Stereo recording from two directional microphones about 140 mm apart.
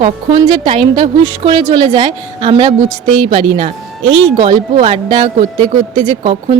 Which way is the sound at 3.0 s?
5° left (ahead or behind).